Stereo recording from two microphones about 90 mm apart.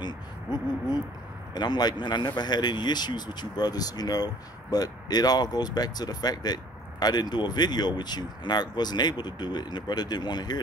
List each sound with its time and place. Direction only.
0.0 s a man's voice: 50° left (ahead or behind)